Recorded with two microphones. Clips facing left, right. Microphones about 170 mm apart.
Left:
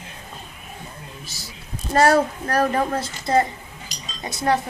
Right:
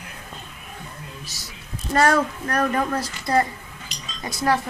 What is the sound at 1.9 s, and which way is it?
A woman's voice, 30° left (ahead or behind).